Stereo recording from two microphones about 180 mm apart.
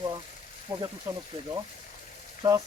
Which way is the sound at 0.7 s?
15° right (ahead or behind).